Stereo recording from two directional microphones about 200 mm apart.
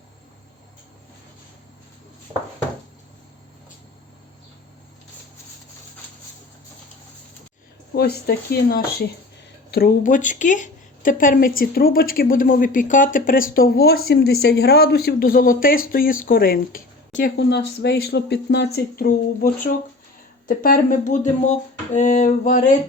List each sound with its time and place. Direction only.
7.9 s speech: 50° left (ahead or behind)
17.3 s speech: 60° left (ahead or behind)
20.5 s speech: 45° left (ahead or behind)